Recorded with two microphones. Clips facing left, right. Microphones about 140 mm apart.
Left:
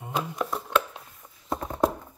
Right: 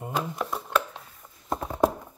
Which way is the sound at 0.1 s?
Centre (ahead or behind).